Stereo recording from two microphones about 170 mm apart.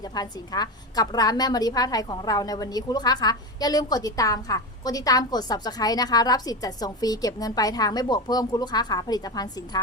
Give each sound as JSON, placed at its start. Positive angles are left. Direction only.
{"t": 0.0, "sound": "a woman's voice", "side_deg": 25}